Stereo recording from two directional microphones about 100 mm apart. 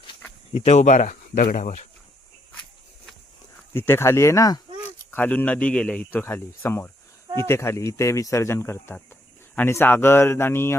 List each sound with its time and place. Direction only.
0.5 s speech: 90° left
3.8 s speech: 25° left (ahead or behind)
5.1 s a man's voice: 15° left (ahead or behind)